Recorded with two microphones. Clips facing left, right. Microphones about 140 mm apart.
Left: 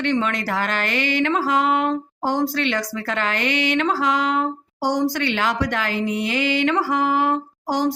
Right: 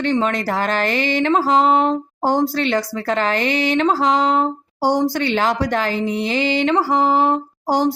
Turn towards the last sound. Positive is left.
turn(degrees=-30)  # may be behind; listen again after turning